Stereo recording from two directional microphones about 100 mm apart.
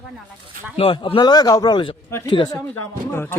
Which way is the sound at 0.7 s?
65° left (ahead or behind).